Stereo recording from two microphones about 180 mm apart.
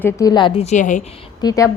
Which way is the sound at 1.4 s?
20° left (ahead or behind).